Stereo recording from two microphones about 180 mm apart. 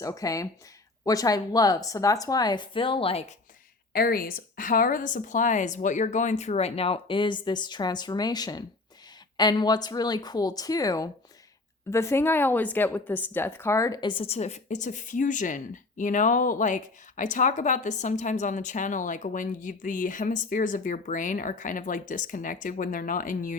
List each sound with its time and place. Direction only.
0.0 s speech: 20° left (ahead or behind); by 3.3 s 35° left (ahead or behind)
3.9 s a woman's voice: 55° left (ahead or behind)